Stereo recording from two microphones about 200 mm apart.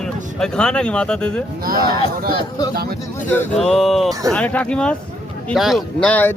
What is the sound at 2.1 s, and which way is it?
Speech, 50° right (ahead or behind).